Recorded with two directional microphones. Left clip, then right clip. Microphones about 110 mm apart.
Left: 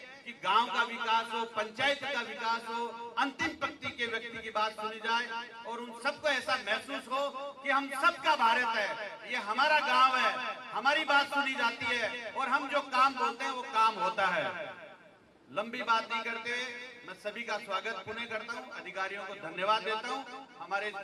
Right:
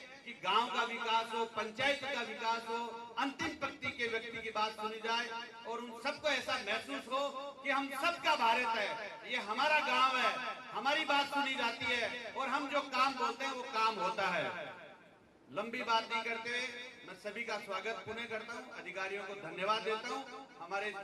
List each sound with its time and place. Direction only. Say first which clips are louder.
0.4 s a man's voice: left 5 dB; 35° left (ahead or behind)